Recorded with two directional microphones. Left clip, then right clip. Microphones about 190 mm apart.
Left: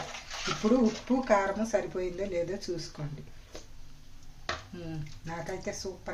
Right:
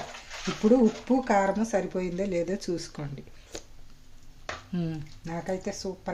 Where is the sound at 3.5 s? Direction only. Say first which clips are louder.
Right 6 dB; 60° right (ahead or behind).